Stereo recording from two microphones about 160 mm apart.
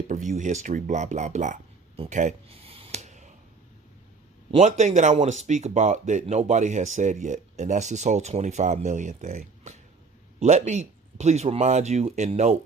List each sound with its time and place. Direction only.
0.1 s speech: 50° right (ahead or behind)
2.0 s a sound: 45° right (ahead or behind)
4.5 s speech: 45° right (ahead or behind)